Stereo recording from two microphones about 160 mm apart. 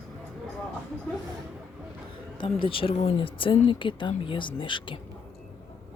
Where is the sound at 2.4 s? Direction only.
35° left (ahead or behind).